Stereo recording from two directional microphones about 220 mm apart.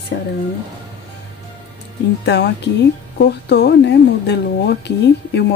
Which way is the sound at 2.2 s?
50° left (ahead or behind).